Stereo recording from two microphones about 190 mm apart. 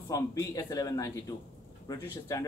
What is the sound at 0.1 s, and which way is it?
Speech, 20° left (ahead or behind).